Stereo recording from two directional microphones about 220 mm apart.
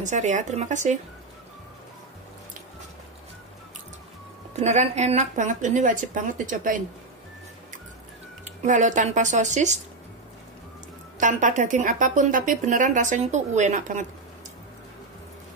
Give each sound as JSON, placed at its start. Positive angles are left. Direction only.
{"t": 0.0, "sound": "speech", "side_deg": -35}
{"t": 4.6, "sound": "speech", "side_deg": -30}
{"t": 8.6, "sound": "speech", "side_deg": -35}
{"t": 11.1, "sound": "speech", "side_deg": -35}